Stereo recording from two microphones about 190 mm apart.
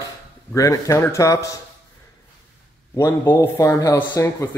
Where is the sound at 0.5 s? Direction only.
15° left (ahead or behind).